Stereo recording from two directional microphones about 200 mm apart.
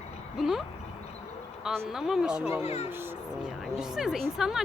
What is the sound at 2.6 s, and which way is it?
Speech, 30° left (ahead or behind).